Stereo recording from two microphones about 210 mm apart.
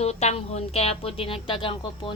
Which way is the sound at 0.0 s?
30° left (ahead or behind).